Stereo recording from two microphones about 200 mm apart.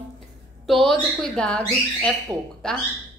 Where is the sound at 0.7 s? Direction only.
Centre (ahead or behind).